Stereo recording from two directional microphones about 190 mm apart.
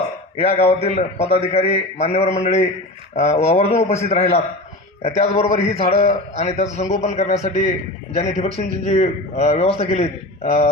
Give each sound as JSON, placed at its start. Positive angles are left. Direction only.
{"t": 0.3, "sound": "a man's voice", "side_deg": 30}